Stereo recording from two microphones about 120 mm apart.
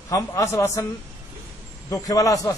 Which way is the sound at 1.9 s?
30° left (ahead or behind).